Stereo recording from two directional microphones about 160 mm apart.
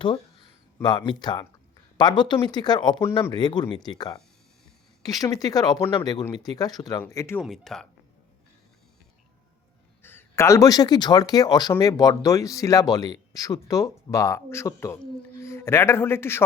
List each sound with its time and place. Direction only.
0.8 s speech: 30° left (ahead or behind)
3.0 s a man's voice: 15° left (ahead or behind)
3.3 s speech: 25° left (ahead or behind)
7.4 s speech: centre (ahead or behind)
10.0 s speech: 15° left (ahead or behind)